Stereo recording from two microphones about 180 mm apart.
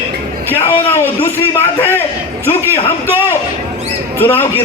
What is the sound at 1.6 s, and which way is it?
Speech, 10° left (ahead or behind).